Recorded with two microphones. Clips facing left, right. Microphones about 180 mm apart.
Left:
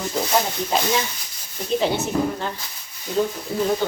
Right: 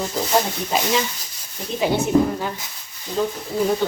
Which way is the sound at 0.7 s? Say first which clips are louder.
Even; 5° right (ahead or behind).